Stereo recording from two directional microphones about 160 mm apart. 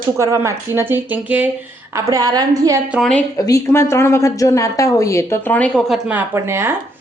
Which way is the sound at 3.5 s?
20° left (ahead or behind).